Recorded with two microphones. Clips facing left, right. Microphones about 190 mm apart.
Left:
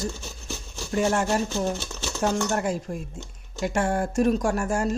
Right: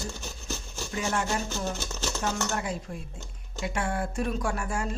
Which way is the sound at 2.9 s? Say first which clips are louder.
Left 6 dB; 50° left (ahead or behind).